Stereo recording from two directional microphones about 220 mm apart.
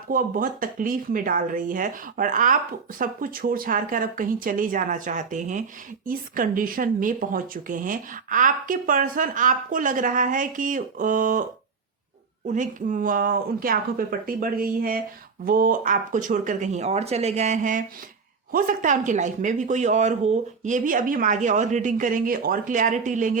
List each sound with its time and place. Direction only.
0.1 s speech: 40° right (ahead or behind)
12.5 s speech: 35° right (ahead or behind)